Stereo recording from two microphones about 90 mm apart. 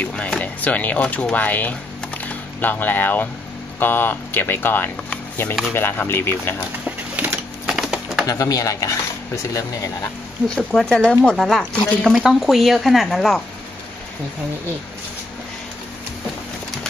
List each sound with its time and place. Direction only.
0.0 s speech: 10° left (ahead or behind)
7.2 s a sound: 10° right (ahead or behind)
8.3 s speech: 45° left (ahead or behind)
10.5 s speech: 5° left (ahead or behind)